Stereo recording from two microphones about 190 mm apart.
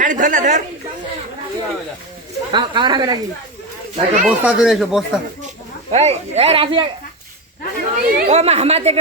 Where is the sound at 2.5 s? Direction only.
25° right (ahead or behind).